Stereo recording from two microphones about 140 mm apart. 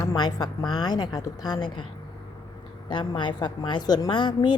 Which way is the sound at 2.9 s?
35° left (ahead or behind).